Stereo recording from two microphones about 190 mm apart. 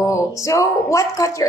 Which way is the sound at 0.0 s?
15° left (ahead or behind).